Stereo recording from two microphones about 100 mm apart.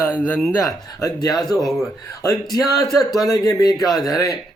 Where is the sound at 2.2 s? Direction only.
35° left (ahead or behind).